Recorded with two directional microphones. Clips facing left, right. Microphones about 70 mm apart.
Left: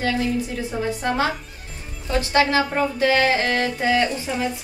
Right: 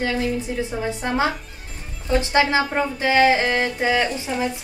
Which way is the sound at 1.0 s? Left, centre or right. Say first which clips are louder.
Right 1 dB; centre.